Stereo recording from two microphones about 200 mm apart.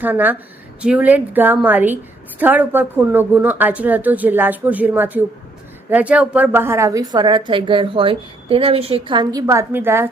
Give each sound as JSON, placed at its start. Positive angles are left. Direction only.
{"t": 0.0, "sound": "a woman's voice", "side_deg": -10}